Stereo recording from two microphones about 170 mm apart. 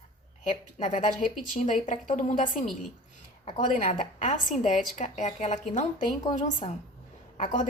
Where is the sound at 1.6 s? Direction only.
45° left (ahead or behind).